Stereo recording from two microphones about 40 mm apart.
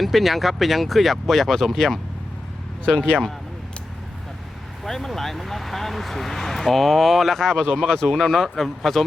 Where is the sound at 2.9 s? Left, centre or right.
Left.